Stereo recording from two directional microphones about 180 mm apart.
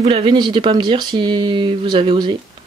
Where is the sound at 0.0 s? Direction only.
30° right (ahead or behind).